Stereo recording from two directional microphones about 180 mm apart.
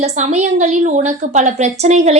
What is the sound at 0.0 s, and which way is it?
A woman's voice, 40° right (ahead or behind).